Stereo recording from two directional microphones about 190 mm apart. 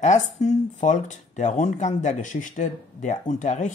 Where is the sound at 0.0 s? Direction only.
40° left (ahead or behind).